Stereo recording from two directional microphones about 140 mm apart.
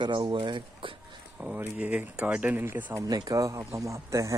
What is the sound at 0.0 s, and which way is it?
Speech, 35° right (ahead or behind).